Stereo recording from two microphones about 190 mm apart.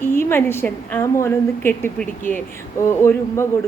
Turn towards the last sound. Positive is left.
turn(degrees=15)  # may be behind; listen again after turning